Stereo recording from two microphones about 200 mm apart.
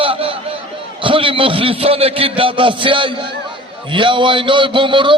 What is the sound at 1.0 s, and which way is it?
A man's voice, 25° right (ahead or behind).